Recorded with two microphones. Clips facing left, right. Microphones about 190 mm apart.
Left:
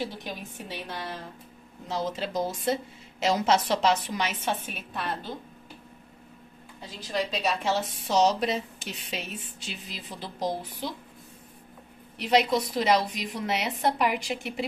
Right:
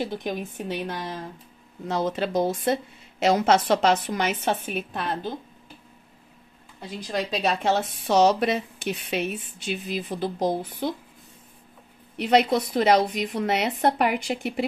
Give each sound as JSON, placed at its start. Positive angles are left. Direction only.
{"t": 0.0, "sound": "a woman's voice", "side_deg": -50}
{"t": 1.9, "sound": "a woman's voice", "side_deg": -60}
{"t": 6.9, "sound": "a woman's voice", "side_deg": -55}
{"t": 12.2, "sound": "a woman's voice", "side_deg": -55}